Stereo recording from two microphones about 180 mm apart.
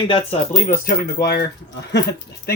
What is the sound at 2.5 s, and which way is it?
Speech, 55° left (ahead or behind).